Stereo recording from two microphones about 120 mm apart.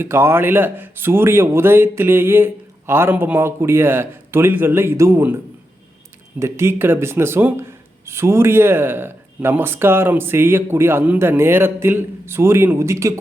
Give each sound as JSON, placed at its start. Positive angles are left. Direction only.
{"t": 0.0, "sound": "speech", "side_deg": -20}
{"t": 6.4, "sound": "speech", "side_deg": -20}